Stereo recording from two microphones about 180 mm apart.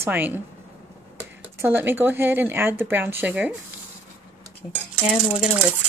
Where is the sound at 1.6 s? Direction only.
10° right (ahead or behind).